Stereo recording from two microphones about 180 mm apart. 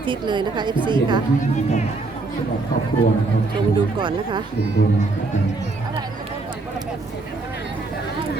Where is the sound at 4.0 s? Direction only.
25° right (ahead or behind).